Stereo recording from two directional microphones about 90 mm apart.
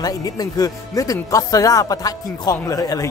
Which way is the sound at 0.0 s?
45° left (ahead or behind).